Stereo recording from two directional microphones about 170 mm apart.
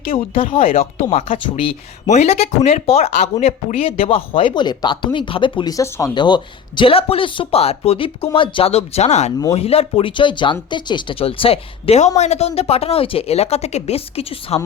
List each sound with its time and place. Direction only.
0.1 s speech: 35° left (ahead or behind)